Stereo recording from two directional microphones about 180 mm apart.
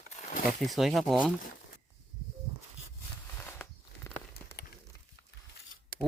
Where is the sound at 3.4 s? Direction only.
10° left (ahead or behind).